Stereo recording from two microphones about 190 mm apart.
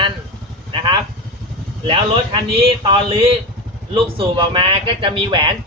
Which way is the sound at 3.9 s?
25° right (ahead or behind).